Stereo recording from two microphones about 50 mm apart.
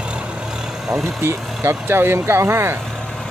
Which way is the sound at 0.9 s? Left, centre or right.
Right.